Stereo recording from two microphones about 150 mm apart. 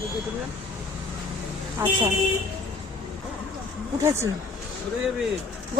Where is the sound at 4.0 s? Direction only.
20° right (ahead or behind).